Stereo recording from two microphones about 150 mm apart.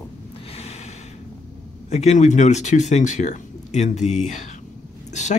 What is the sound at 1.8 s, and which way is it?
Speech, 50° left (ahead or behind).